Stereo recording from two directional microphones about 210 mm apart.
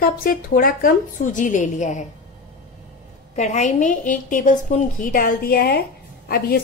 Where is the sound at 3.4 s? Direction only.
35° left (ahead or behind).